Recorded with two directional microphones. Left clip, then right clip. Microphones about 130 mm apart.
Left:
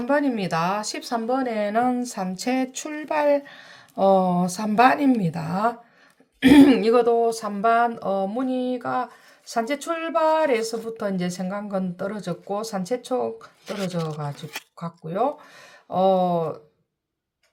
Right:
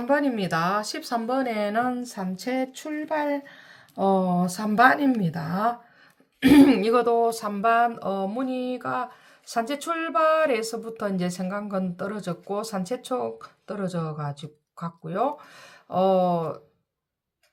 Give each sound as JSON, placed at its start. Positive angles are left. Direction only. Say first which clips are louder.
{"t": 0.0, "sound": "speech", "louder": "left 1 dB", "side_deg": 0}
{"t": 1.3, "sound": "speech", "louder": "left 3 dB", "side_deg": -5}
{"t": 1.9, "sound": "speech", "louder": "left 4 dB", "side_deg": 25}